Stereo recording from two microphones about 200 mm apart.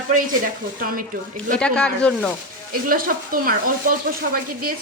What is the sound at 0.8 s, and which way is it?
Speech, 45° right (ahead or behind).